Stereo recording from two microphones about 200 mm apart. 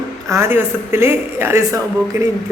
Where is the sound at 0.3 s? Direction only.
10° right (ahead or behind).